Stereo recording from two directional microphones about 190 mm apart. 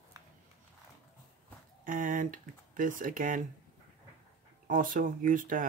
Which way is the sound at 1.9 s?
45° right (ahead or behind).